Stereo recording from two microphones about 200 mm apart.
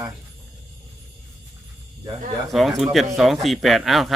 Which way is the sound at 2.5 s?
Centre (ahead or behind).